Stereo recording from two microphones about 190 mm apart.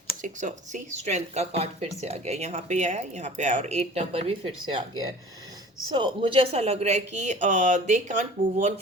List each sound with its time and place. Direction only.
0.2 s speech: 40° right (ahead or behind)
5.9 s speech: 25° right (ahead or behind)